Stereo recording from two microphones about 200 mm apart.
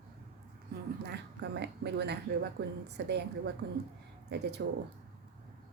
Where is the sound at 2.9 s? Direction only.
55° right (ahead or behind).